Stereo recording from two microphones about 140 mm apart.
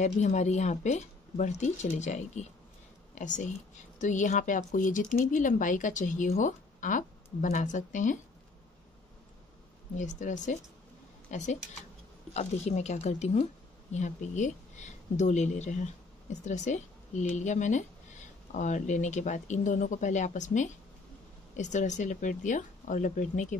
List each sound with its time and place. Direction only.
0.0 s speech: 55° left (ahead or behind)
9.9 s speech: 60° left (ahead or behind)